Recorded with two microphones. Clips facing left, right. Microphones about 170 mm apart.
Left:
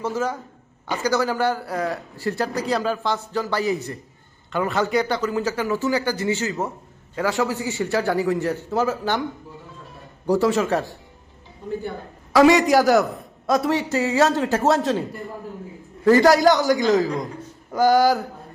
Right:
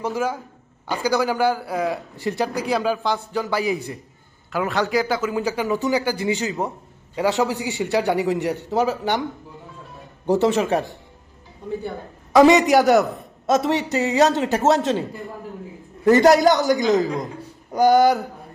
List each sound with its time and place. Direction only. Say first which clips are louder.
0.0 s speech: right 1 dB; 10° right (ahead or behind)
2.1 s speech: left 1 dB; 20° right (ahead or behind)
2.6 s speech: right 1 dB; 10° right (ahead or behind)
10.2 s speech: right 1 dB; 20° right (ahead or behind)
12.3 s speech: right 2 dB; 20° right (ahead or behind)
12.6 s a man's voice: right 1 dB; centre (ahead or behind)
13.7 s speech: even; 20° right (ahead or behind)
14.3 s a man's voice: right 1 dB; centre (ahead or behind)
16.0 s speech: right 1 dB; 20° right (ahead or behind)
16.3 s a man's voice: right 1 dB; centre (ahead or behind)